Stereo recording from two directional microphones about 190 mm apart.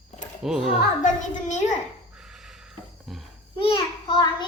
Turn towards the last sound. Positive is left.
turn(degrees=25)  # may be behind; listen again after turning